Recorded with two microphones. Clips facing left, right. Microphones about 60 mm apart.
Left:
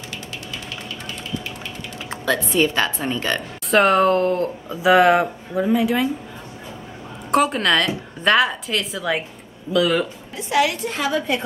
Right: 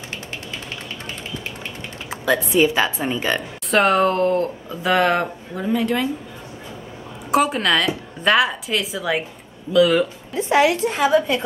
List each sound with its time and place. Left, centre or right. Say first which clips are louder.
2.0 s a woman's voice: right 2 dB; centre
3.7 s speech: left 1 dB; centre
7.2 s speech: even; centre
10.3 s a woman's voice: right 3 dB; right
10.9 s a woman's voice: right 5 dB; centre